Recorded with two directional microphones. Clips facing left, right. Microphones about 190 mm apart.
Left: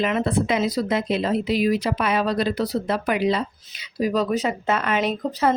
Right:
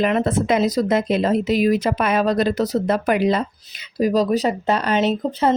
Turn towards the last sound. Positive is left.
turn(degrees=-30)  # may be behind; listen again after turning